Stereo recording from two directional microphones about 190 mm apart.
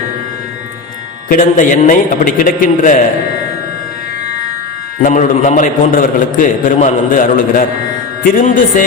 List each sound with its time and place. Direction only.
1.3 s a man's voice: 45° left (ahead or behind)
4.9 s a man's voice: 40° left (ahead or behind)